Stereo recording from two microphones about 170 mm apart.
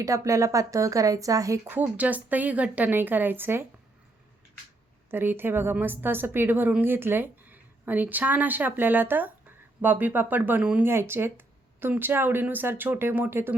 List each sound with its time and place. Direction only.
0.0 s a woman's voice: 20° right (ahead or behind)
5.1 s a woman's voice: 10° right (ahead or behind)